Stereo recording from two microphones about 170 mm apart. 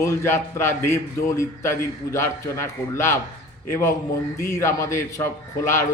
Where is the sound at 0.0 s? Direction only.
15° left (ahead or behind).